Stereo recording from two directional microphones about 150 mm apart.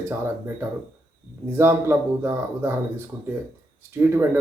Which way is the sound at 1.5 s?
15° right (ahead or behind).